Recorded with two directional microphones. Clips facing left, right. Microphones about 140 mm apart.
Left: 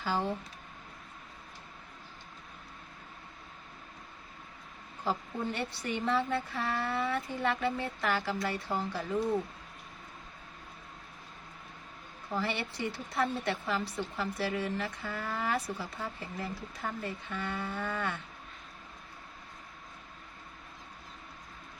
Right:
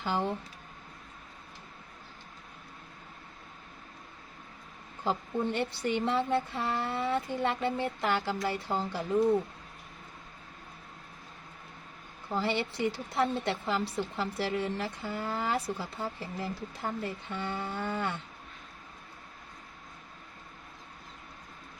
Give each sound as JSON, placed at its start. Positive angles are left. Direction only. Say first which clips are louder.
{"t": 0.0, "sound": "speech", "louder": "right 1 dB", "side_deg": -20}
{"t": 5.0, "sound": "speech", "louder": "right 3 dB", "side_deg": -25}
{"t": 12.3, "sound": "speech", "louder": "right 3 dB", "side_deg": -25}